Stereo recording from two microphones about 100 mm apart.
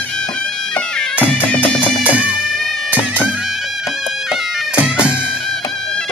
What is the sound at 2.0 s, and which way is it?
Music, 15° right (ahead or behind).